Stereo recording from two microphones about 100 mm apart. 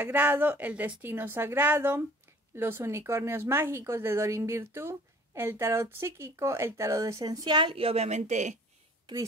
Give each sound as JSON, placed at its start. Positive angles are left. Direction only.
{"t": 0.0, "sound": "speech", "side_deg": -20}
{"t": 7.4, "sound": "a woman's voice", "side_deg": -55}